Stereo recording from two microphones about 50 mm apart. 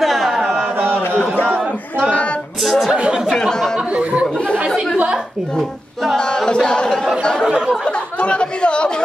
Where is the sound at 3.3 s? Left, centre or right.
Centre.